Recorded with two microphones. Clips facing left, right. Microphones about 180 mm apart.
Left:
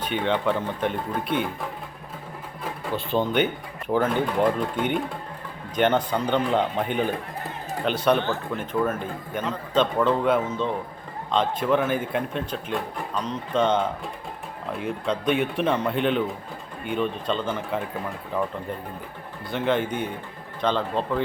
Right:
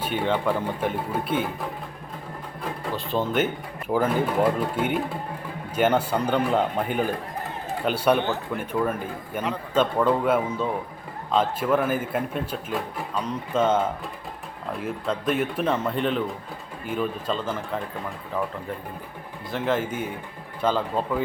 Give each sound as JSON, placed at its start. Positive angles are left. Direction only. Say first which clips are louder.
{"t": 0.0, "sound": "a man's voice", "louder": "even", "side_deg": -5}
{"t": 2.9, "sound": "a man's voice", "louder": "left 2 dB", "side_deg": 0}
{"t": 19.5, "sound": "a man's voice", "louder": "left 1 dB", "side_deg": 0}